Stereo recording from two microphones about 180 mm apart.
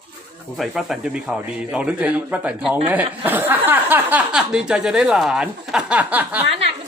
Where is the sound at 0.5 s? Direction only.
Centre (ahead or behind).